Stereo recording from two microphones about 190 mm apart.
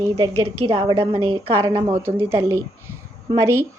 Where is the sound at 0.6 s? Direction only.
30° right (ahead or behind).